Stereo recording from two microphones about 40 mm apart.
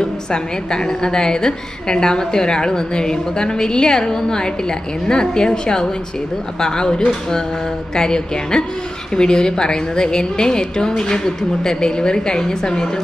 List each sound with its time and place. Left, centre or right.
0.0 s a woman's voice: centre